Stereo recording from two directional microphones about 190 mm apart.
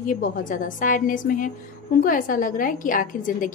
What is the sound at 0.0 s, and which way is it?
Speech, 45° left (ahead or behind).